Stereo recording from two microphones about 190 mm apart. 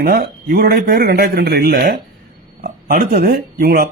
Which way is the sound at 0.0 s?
55° right (ahead or behind).